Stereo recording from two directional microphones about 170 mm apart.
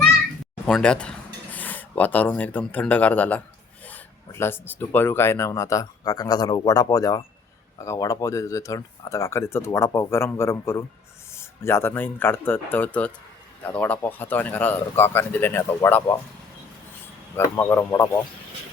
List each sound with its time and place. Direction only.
0.7 s speech: 5° left (ahead or behind)
17.3 s speech: 15° left (ahead or behind)